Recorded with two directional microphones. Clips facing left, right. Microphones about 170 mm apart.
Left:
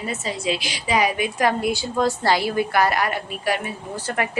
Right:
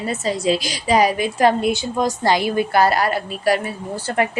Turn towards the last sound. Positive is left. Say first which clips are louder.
# right 5 dB
turn(degrees=-30)  # may be behind; listen again after turning